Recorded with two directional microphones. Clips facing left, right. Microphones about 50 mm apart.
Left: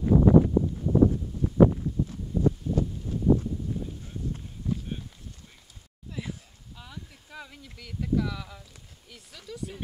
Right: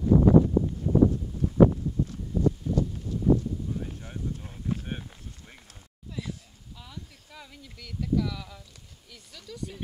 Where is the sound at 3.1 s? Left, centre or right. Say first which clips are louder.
Even; left.